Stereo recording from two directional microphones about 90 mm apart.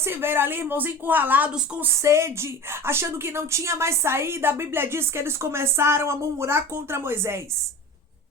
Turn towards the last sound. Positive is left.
turn(degrees=-30)  # may be behind; listen again after turning